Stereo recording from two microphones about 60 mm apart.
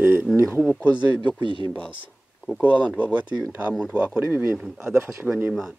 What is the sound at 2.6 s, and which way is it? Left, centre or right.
Speech, right.